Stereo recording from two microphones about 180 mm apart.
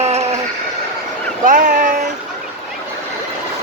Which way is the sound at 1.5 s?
50° right (ahead or behind).